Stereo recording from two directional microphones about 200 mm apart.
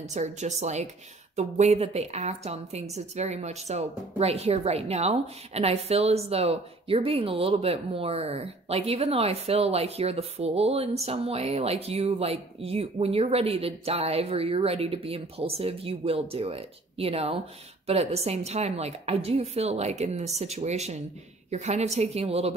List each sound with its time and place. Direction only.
0.1 s a woman's voice: 35° right (ahead or behind)